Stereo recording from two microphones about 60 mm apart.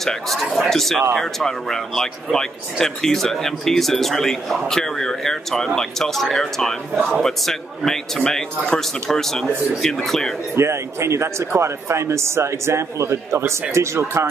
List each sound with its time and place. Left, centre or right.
0.0 s speech: centre
10.5 s speech: right